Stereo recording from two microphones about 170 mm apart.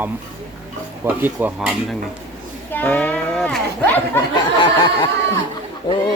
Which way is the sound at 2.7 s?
10° left (ahead or behind).